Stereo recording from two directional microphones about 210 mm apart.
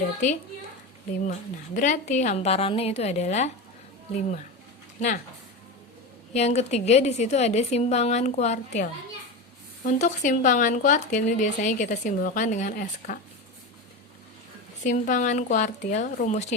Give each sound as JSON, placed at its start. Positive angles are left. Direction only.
{"t": 1.3, "sound": "speech", "side_deg": 35}
{"t": 4.9, "sound": "speech", "side_deg": 35}
{"t": 6.3, "sound": "speech", "side_deg": 30}
{"t": 14.8, "sound": "speech", "side_deg": 35}